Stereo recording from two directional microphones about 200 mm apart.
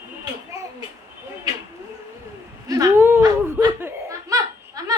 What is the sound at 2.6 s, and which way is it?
Laughter, 15° right (ahead or behind).